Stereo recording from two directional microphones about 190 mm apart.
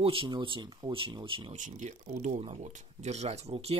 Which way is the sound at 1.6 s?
40° right (ahead or behind).